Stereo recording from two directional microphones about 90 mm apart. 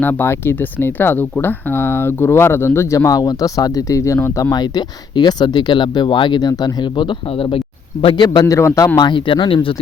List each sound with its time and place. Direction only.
0.0 s speech: 25° left (ahead or behind)
3.1 s speech: 45° left (ahead or behind)
4.5 s speech: 50° left (ahead or behind); by 7.6 s 70° left (ahead or behind)
8.0 s a man's voice: 55° left (ahead or behind)
8.5 s speech: 35° left (ahead or behind)
9.0 s speech: 60° left (ahead or behind)